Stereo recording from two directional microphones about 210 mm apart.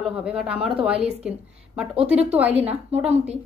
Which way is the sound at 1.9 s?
30° right (ahead or behind).